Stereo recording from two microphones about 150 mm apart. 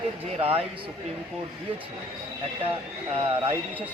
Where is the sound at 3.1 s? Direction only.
40° right (ahead or behind).